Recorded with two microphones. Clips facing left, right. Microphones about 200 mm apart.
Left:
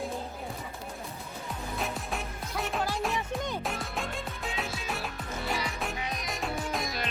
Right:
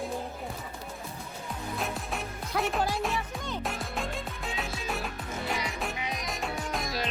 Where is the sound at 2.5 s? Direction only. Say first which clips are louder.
Right 5 dB; 90° right.